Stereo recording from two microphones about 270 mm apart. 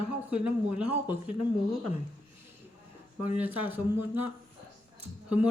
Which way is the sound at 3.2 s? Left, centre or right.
Centre.